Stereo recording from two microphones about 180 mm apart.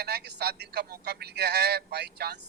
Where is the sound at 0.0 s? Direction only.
65° right (ahead or behind).